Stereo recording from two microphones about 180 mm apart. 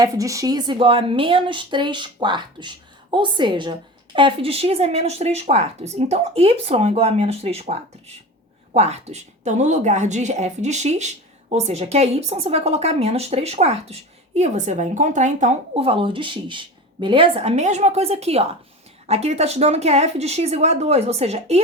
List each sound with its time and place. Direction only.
0.0 s a woman's voice: 20° right (ahead or behind); by 21.6 s 35° right (ahead or behind)